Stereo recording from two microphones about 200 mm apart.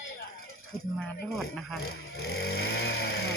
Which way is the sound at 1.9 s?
50° left (ahead or behind).